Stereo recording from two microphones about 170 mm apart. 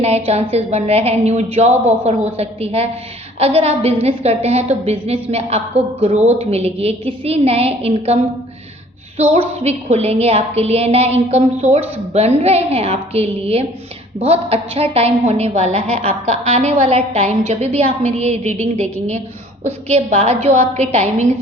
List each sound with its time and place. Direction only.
0.0 s a woman's voice: 35° right (ahead or behind)
1.7 s a man's voice: 10° right (ahead or behind)
2.0 s a woman's voice: 35° right (ahead or behind)
9.3 s a woman's voice: 35° right (ahead or behind)